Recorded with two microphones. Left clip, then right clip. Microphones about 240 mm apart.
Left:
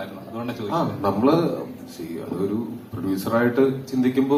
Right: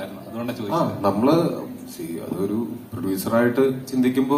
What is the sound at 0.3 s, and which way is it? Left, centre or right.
A man's voice, right.